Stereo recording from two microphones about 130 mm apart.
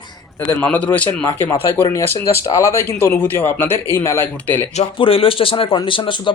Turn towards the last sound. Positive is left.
turn(degrees=40)  # may be behind; listen again after turning